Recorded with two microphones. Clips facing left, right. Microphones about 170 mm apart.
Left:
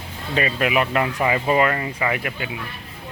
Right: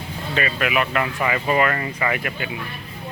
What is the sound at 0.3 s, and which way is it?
Speech, 30° left (ahead or behind).